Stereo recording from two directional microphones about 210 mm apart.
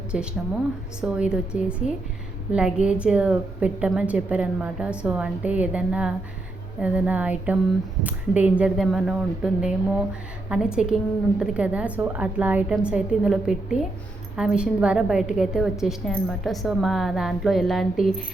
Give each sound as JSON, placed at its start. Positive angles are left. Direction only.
{"t": 0.1, "sound": "a woman's voice", "side_deg": -5}
{"t": 6.7, "sound": "a sound", "side_deg": -5}
{"t": 8.0, "sound": "a woman's voice", "side_deg": -5}